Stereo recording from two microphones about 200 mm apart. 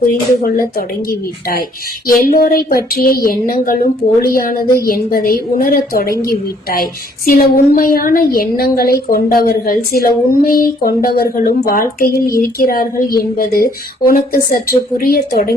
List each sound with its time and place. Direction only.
0.5 s a woman's voice: 45° left (ahead or behind)